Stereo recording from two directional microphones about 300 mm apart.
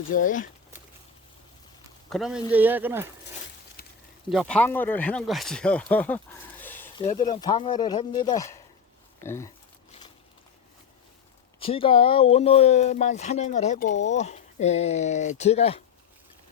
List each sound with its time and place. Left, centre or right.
0.1 s speech: left
2.0 s speech: centre
3.8 s a sound: left
4.3 s speech: centre
11.6 s speech: centre